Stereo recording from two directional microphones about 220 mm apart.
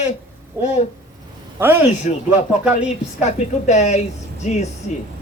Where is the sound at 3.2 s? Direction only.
30° left (ahead or behind).